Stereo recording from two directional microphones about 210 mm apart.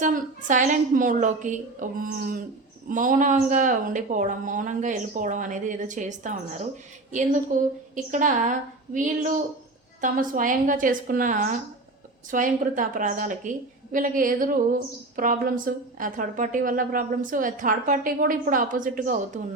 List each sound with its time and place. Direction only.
0.0 s a woman's voice: 40° right (ahead or behind)
7.5 s a woman's voice: 40° right (ahead or behind)